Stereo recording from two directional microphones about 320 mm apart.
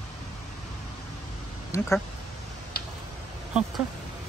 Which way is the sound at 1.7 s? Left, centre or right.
Centre.